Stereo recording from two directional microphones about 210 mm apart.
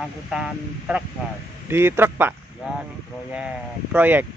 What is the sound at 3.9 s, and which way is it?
Speech, 10° right (ahead or behind).